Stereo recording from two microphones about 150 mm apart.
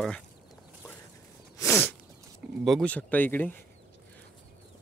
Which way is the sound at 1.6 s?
15° left (ahead or behind).